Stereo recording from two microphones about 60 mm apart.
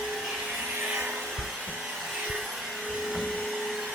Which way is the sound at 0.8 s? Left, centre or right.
Centre.